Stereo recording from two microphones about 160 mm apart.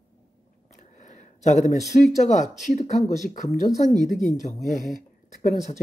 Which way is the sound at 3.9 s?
Centre (ahead or behind).